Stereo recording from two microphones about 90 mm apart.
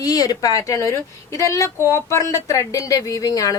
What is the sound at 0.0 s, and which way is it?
Speech, 45° left (ahead or behind).